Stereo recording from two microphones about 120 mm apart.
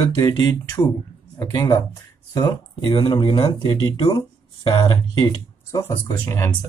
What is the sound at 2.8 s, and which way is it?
Speech, 40° left (ahead or behind).